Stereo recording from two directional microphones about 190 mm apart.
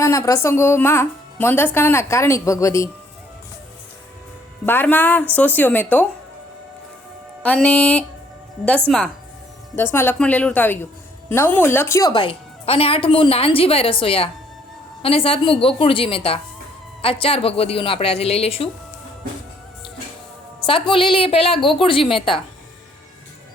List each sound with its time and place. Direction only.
0.0 s speech: 15° left (ahead or behind)
4.6 s speech: 10° left (ahead or behind)
7.4 s speech: 5° left (ahead or behind)
9.7 s a woman's voice: 10° left (ahead or behind); by 18.7 s 30° left (ahead or behind)
20.7 s a woman's voice: 25° left (ahead or behind)